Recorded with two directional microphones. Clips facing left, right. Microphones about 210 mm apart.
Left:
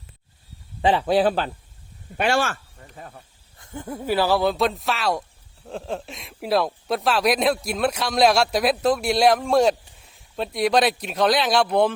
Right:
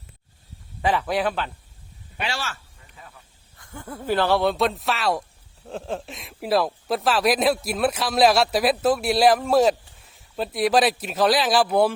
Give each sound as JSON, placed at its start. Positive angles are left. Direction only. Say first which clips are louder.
{"t": 0.8, "sound": "a man's voice", "louder": "left 4 dB", "side_deg": 30}
{"t": 2.1, "sound": "speech", "louder": "left 9 dB", "side_deg": 50}
{"t": 3.6, "sound": "speech", "louder": "left 4 dB", "side_deg": 20}